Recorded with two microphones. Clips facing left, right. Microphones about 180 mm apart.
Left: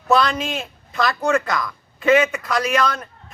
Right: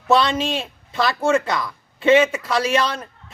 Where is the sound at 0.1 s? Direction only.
25° right (ahead or behind).